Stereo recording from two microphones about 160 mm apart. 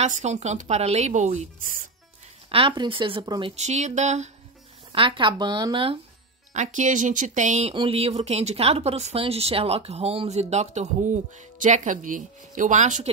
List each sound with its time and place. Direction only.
0.0 s speech: 45° right (ahead or behind)
2.5 s speech: 30° right (ahead or behind)
3.5 s speech: 45° right (ahead or behind)
4.9 s speech: 30° right (ahead or behind)
6.5 s speech: 50° right (ahead or behind)
7.7 s speech: 35° right (ahead or behind)